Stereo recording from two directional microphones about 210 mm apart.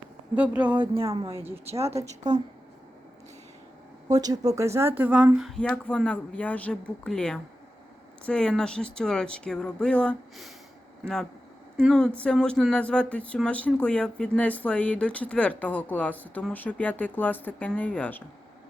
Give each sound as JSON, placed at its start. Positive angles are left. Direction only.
{"t": 0.3, "sound": "speech", "side_deg": -5}
{"t": 1.8, "sound": "speech", "side_deg": -30}
{"t": 4.1, "sound": "speech", "side_deg": -15}
{"t": 11.9, "sound": "speech", "side_deg": 5}